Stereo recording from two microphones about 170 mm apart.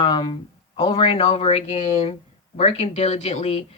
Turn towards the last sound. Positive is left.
turn(degrees=35)  # may be behind; listen again after turning